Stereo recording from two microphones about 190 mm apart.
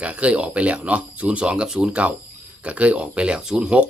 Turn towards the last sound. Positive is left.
turn(degrees=-5)  # may be behind; listen again after turning